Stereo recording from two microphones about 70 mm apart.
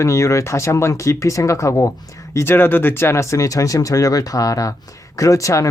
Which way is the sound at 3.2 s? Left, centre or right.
Left.